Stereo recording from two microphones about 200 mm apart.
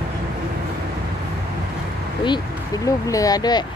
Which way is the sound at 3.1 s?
15° left (ahead or behind).